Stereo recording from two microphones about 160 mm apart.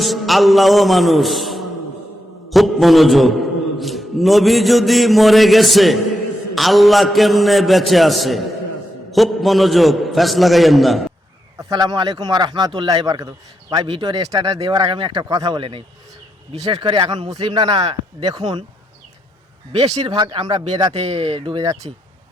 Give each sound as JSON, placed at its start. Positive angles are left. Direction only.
{"t": 0.0, "sound": "a man's voice", "side_deg": 0}
{"t": 11.5, "sound": "speech", "side_deg": -25}
{"t": 19.8, "sound": "speech", "side_deg": -35}
{"t": 20.9, "sound": "speech", "side_deg": -40}